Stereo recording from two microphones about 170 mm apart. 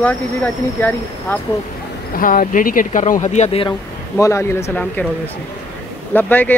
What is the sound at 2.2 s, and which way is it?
Speech, 50° left (ahead or behind).